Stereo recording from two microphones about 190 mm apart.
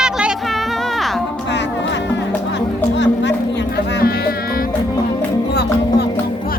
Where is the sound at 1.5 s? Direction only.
70° left (ahead or behind).